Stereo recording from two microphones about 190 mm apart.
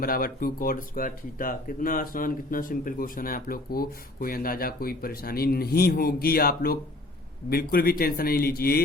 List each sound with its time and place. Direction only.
0.0 s speech: 50° left (ahead or behind)